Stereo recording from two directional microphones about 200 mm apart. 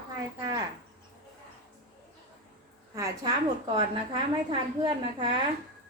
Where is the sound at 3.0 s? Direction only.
15° right (ahead or behind).